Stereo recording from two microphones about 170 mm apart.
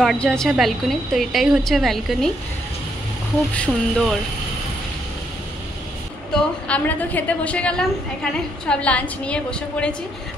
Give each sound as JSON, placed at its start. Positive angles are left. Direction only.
{"t": 0.0, "sound": "a woman's voice", "side_deg": 5}
{"t": 3.5, "sound": "a woman's voice", "side_deg": 5}
{"t": 6.3, "sound": "a woman's voice", "side_deg": 10}